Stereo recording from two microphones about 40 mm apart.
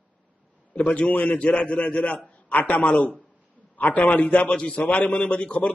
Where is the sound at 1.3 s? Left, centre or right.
Left.